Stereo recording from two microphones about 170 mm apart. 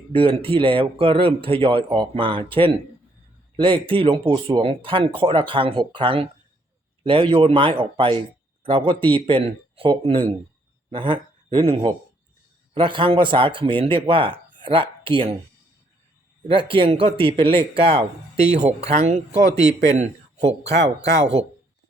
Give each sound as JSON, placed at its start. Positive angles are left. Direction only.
{"t": 0.1, "sound": "a man's voice", "side_deg": -30}
{"t": 3.6, "sound": "a man's voice", "side_deg": -30}
{"t": 16.5, "sound": "a man's voice", "side_deg": -30}